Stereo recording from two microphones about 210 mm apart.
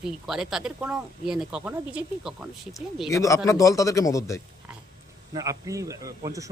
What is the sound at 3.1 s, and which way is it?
Speech, 15° left (ahead or behind).